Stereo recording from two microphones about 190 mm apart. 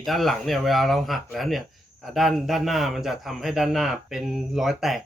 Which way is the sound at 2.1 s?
Centre (ahead or behind).